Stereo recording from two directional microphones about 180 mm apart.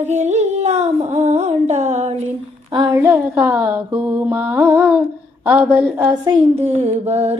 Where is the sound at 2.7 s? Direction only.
20° right (ahead or behind).